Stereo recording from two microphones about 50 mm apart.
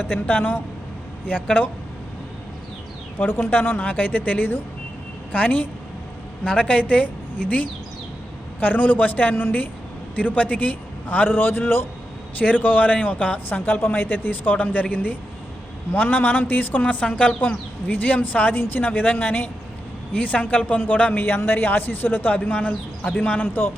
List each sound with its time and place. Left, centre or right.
0.1 s speech: left
3.2 s speech: left
6.4 s a woman's voice: left
8.6 s speech: left
10.2 s a man's voice: left
11.3 s a man's voice: left
12.4 s speech: left
13.7 s a woman's voice: left
21.2 s a man's voice: left